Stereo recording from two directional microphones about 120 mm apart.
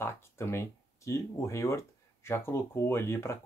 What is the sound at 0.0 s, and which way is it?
Speech, 20° left (ahead or behind).